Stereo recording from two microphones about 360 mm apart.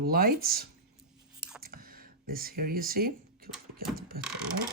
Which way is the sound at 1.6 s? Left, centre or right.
Right.